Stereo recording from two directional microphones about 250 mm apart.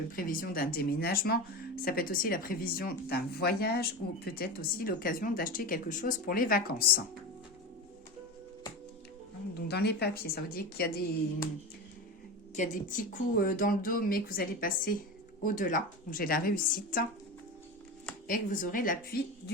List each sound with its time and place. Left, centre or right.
0.2 s speech: left
9.6 s speech: left
12.5 s speech: left
18.3 s speech: left